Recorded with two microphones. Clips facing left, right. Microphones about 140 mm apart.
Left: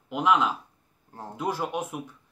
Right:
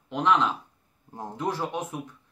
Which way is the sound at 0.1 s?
10° left (ahead or behind).